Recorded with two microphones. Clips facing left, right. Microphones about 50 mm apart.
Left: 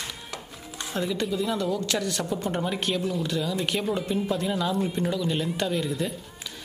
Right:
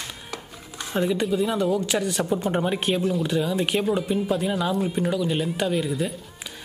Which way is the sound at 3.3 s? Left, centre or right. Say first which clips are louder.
Right 4 dB; centre.